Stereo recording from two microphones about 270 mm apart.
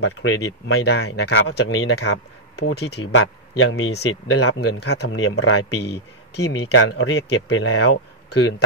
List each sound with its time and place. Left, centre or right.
0.0 s speech: left
4.7 s speech: left